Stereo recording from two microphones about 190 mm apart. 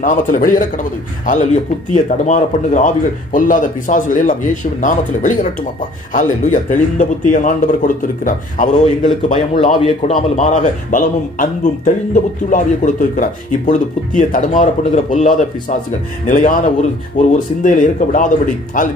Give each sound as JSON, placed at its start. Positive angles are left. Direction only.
{"t": 0.0, "sound": "a man's voice", "side_deg": 45}
{"t": 9.8, "sound": "a man's voice", "side_deg": 30}